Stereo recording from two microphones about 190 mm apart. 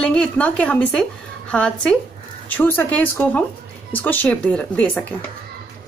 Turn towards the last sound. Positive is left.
turn(degrees=5)  # may be behind; listen again after turning